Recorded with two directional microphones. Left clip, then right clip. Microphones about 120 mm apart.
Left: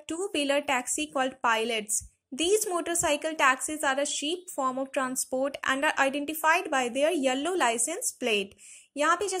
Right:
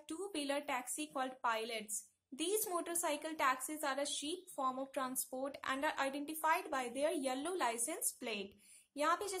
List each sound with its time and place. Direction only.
0.1 s a woman's voice: 30° left (ahead or behind)